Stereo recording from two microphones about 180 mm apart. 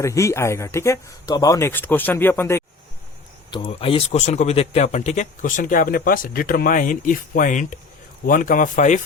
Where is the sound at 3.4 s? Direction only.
30° left (ahead or behind).